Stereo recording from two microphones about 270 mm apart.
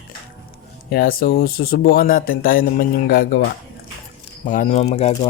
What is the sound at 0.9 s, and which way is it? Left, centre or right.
Speech, left.